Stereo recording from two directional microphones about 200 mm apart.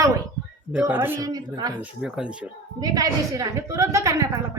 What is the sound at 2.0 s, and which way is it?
Speech, 5° right (ahead or behind).